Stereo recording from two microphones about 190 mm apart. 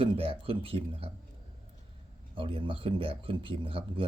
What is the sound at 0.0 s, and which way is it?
Speech, 30° right (ahead or behind).